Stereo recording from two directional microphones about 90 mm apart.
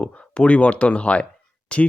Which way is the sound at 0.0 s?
15° left (ahead or behind).